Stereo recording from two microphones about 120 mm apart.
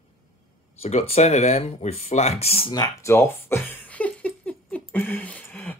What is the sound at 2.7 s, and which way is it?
Speech, 20° left (ahead or behind).